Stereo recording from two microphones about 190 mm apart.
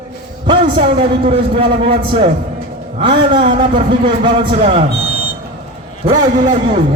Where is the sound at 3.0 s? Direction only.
25° right (ahead or behind).